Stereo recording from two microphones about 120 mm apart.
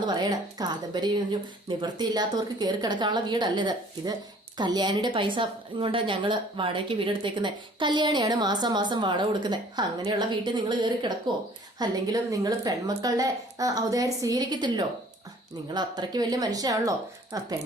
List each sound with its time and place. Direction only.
0.0 s a woman's voice: 35° right (ahead or behind)